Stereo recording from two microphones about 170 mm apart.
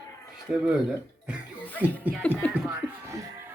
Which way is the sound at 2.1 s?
10° right (ahead or behind).